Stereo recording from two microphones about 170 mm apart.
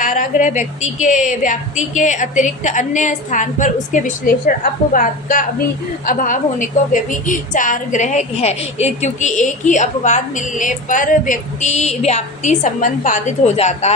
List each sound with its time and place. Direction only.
0.0 s a woman's voice: 50° left (ahead or behind)